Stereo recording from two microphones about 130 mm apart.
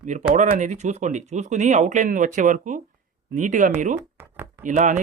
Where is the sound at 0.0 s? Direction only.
70° right (ahead or behind).